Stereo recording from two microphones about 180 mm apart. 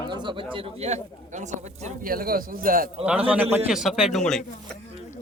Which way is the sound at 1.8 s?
55° right (ahead or behind).